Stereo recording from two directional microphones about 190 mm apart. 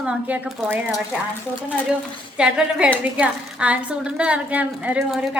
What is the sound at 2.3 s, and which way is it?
A woman's voice, 5° right (ahead or behind).